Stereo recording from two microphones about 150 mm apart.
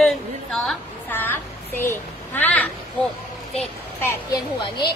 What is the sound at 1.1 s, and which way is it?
A woman's voice, 15° left (ahead or behind).